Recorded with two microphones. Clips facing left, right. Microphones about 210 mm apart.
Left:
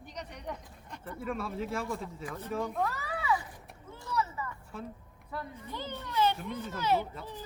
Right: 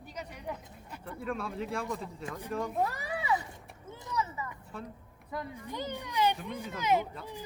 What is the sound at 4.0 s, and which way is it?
Speech, 20° right (ahead or behind).